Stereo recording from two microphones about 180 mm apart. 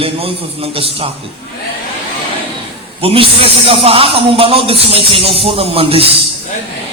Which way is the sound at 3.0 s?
30° right (ahead or behind).